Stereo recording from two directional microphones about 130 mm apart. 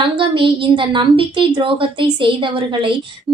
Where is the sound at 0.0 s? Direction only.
40° right (ahead or behind).